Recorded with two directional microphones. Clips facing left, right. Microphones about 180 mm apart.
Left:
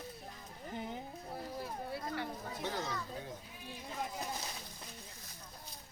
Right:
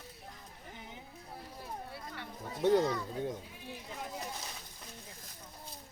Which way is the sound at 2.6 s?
55° right (ahead or behind).